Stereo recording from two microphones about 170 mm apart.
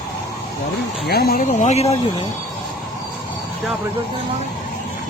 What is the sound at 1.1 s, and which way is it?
Speech, 65° left (ahead or behind).